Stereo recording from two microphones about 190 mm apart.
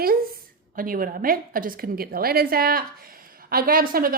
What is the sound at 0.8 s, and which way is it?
Speech, 45° right (ahead or behind).